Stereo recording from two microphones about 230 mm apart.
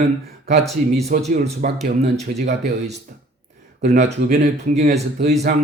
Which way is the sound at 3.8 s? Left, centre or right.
Right.